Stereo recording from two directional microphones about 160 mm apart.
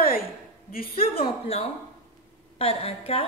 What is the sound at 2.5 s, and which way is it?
Speech, 40° left (ahead or behind).